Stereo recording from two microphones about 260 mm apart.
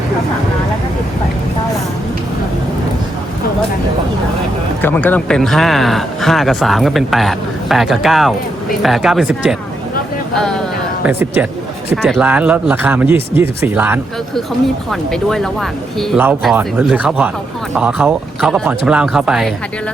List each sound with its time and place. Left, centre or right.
4.8 s speech: centre